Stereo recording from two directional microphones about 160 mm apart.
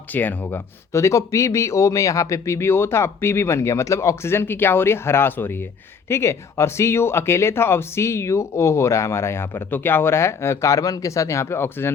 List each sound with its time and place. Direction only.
0.1 s speech: 10° left (ahead or behind)